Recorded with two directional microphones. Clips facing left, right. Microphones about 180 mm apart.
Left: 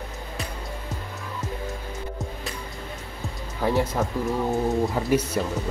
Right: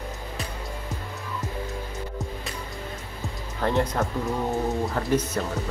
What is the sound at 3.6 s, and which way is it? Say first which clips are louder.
Speech: left 1 dB; 5° left (ahead or behind).